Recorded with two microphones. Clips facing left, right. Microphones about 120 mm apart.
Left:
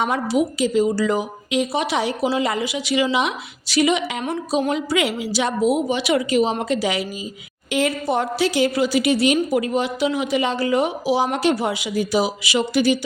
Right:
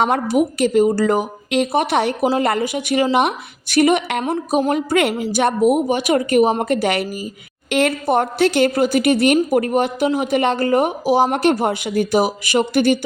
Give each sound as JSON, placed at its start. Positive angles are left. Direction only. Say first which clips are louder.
{"t": 0.0, "sound": "a woman's voice", "louder": "right 3 dB", "side_deg": -55}